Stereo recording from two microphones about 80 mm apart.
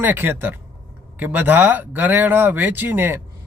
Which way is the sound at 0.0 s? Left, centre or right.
Right.